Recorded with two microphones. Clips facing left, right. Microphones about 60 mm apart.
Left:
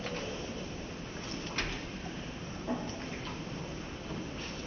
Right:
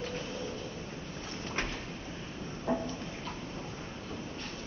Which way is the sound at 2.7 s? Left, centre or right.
Right.